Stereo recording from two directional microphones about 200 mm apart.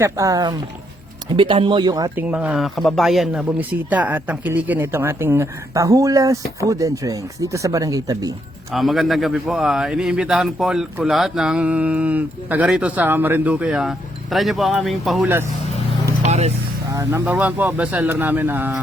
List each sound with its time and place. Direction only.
0.0 s speech: 15° right (ahead or behind)
2.1 s speech: 5° right (ahead or behind)
8.7 s a man's voice: centre (ahead or behind)
16.2 s vehicle: 35° right (ahead or behind)
16.9 s speech: 15° right (ahead or behind)